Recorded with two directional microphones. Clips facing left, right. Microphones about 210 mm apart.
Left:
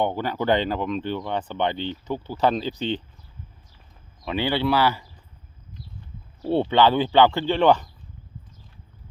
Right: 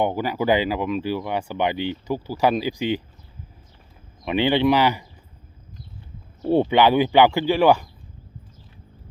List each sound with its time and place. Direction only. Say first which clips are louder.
0.0 s speech: right 2 dB; 10° right (ahead or behind)
4.2 s speech: right 5 dB; 20° right (ahead or behind)
6.4 s speech: right 2 dB; 15° right (ahead or behind)